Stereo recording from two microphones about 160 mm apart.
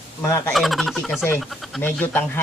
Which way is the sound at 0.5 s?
Centre (ahead or behind).